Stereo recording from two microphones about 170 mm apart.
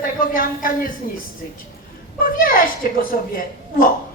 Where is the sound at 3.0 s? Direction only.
55° left (ahead or behind).